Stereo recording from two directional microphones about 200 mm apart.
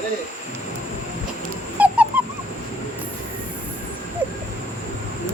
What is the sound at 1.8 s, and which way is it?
Owl, 5° right (ahead or behind).